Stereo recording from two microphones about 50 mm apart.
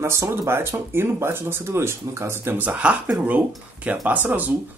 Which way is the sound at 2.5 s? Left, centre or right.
Right.